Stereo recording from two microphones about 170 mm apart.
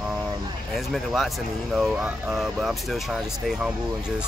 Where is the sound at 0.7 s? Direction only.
Centre (ahead or behind).